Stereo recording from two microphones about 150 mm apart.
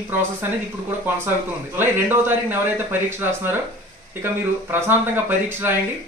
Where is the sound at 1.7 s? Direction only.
15° right (ahead or behind).